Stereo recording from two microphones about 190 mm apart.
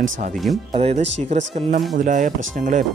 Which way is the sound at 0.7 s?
35° right (ahead or behind).